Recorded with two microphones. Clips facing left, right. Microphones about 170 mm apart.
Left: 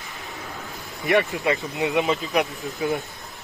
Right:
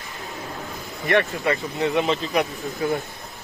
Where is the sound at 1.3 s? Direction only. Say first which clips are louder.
Even; 15° left (ahead or behind).